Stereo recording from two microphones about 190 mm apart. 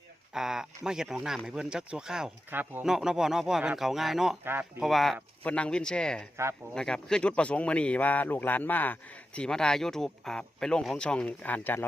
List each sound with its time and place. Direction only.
0.3 s speech: 5° right (ahead or behind)
6.3 s speech: 15° right (ahead or behind)
6.7 s speech: 5° left (ahead or behind)